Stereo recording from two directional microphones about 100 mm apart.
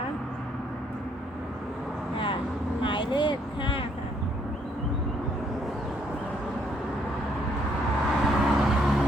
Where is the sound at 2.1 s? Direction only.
55° left (ahead or behind).